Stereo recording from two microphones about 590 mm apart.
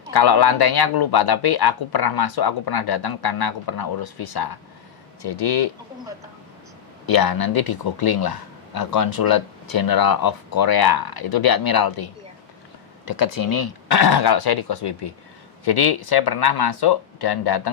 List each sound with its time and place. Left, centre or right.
0.1 s speech: left
7.1 s speech: left
13.1 s speech: left